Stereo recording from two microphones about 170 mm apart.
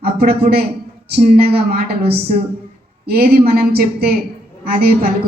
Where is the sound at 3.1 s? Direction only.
65° right (ahead or behind).